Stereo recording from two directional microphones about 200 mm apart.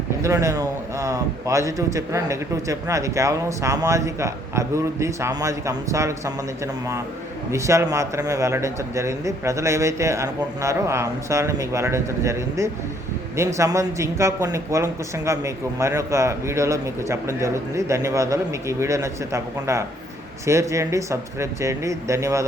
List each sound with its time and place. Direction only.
0.2 s speech: 15° right (ahead or behind)
7.5 s speech: 15° right (ahead or behind)